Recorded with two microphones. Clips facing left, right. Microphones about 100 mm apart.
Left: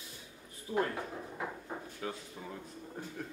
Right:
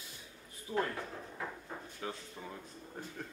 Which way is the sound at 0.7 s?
15° left (ahead or behind).